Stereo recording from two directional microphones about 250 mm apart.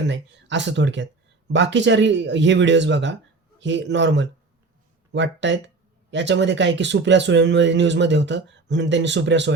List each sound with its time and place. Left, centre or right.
0.1 s speech: right